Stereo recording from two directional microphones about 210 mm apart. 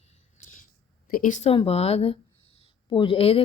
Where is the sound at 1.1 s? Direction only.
40° left (ahead or behind).